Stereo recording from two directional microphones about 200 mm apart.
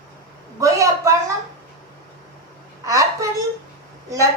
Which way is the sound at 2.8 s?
15° right (ahead or behind).